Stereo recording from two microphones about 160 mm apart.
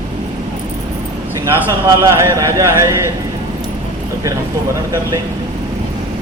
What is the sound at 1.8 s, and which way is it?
A man's voice, 20° right (ahead or behind).